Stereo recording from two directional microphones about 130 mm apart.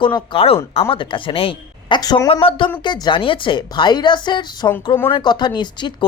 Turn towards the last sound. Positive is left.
turn(degrees=35)  # may be behind; listen again after turning